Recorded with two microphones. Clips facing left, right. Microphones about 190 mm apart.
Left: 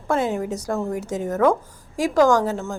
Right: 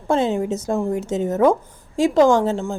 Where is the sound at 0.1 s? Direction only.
25° right (ahead or behind).